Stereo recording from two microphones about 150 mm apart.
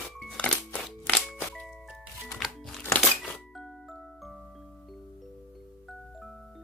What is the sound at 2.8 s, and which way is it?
Music, 15° left (ahead or behind).